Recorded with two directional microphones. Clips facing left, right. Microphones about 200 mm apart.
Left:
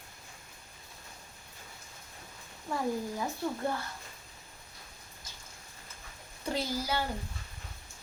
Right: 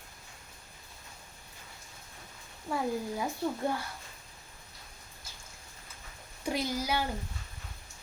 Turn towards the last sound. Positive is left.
turn(degrees=-15)  # may be behind; listen again after turning